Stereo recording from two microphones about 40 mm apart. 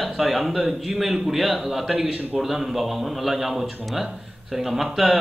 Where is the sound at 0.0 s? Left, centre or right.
Centre.